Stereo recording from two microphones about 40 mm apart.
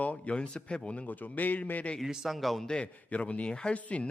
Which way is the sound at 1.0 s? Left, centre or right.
Left.